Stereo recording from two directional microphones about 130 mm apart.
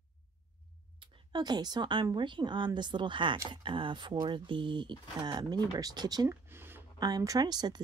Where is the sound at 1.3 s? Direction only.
30° right (ahead or behind).